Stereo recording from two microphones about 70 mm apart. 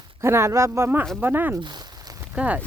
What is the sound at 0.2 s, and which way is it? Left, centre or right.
Speech, right.